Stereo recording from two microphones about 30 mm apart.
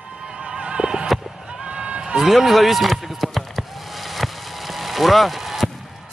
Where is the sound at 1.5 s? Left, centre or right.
Right.